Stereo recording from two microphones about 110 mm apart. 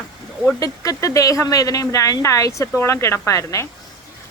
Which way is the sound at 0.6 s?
30° left (ahead or behind).